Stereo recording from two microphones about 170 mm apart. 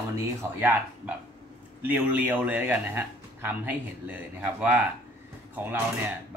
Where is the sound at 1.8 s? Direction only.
10° right (ahead or behind).